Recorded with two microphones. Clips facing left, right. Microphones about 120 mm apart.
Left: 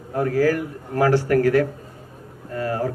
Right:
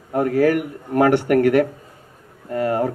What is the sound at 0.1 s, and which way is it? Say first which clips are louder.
A man's voice: right 3 dB; 25° right (ahead or behind).